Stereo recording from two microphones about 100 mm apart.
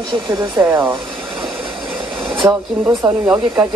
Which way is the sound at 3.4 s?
50° right (ahead or behind).